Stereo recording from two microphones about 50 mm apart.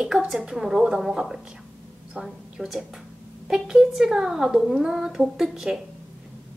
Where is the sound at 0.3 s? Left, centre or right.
Centre.